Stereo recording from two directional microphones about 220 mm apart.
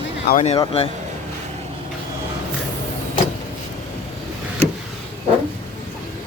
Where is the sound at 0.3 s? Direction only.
30° left (ahead or behind).